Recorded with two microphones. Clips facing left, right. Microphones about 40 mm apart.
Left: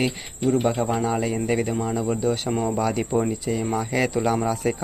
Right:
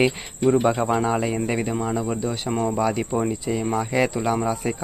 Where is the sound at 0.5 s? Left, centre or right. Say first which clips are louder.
Right 1 dB; right.